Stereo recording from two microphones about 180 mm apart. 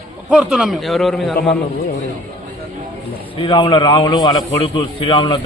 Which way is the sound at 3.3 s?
30° left (ahead or behind).